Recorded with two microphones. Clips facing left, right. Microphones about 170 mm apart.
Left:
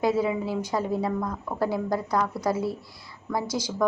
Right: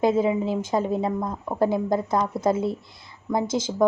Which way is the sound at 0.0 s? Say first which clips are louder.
Right 3 dB; 20° right (ahead or behind).